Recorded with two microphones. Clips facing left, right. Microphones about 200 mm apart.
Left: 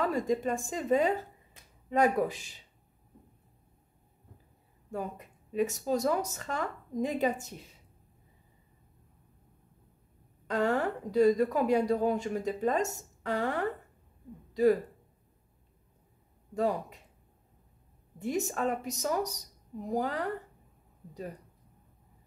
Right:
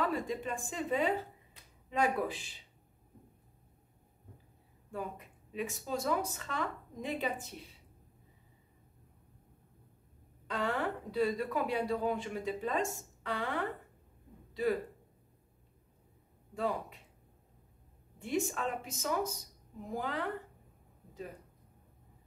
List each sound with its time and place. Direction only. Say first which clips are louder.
0.0 s speech: left 5 dB; 45° left (ahead or behind)
4.9 s a woman's voice: left 4 dB; 45° left (ahead or behind)
10.4 s a woman's voice: left 6 dB; 45° left (ahead or behind)
16.5 s speech: left 5 dB; 40° left (ahead or behind)
18.2 s speech: left 3 dB; 40° left (ahead or behind)